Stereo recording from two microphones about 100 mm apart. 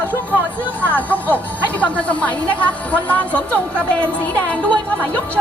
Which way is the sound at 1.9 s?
15° left (ahead or behind).